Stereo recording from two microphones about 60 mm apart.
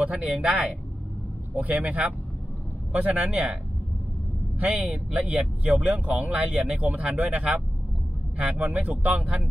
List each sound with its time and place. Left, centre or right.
0.0 s speech: centre
1.6 s speech: right
4.6 s speech: right